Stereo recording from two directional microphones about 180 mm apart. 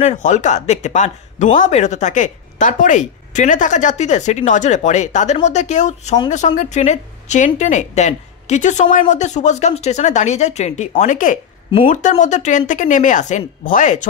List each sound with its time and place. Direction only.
0.0 s speech: 40° left (ahead or behind)